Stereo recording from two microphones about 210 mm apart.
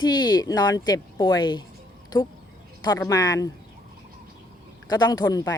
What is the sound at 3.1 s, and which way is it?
Speech, 15° left (ahead or behind).